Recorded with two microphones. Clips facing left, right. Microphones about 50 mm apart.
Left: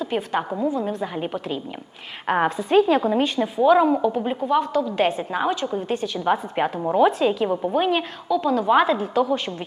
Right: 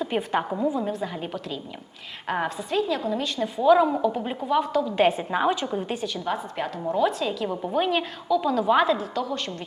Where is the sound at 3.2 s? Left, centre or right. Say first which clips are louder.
Left 6 dB; left.